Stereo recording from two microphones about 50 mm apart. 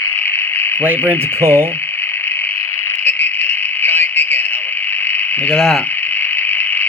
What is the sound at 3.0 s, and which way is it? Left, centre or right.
Radio, left.